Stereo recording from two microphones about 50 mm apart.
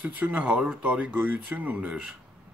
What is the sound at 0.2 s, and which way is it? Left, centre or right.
Speech, right.